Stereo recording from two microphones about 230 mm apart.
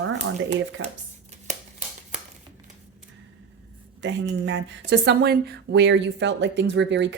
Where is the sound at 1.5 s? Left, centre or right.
Right.